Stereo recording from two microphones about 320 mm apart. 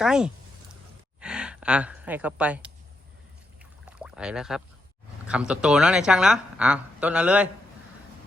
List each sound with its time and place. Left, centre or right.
0.0 s speech: centre
3.6 s rowboat: centre
5.3 s speech: centre